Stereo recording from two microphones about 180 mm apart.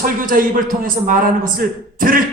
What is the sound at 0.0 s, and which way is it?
A man's voice, 50° right (ahead or behind).